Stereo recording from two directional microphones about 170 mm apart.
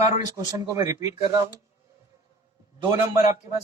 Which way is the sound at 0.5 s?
20° right (ahead or behind).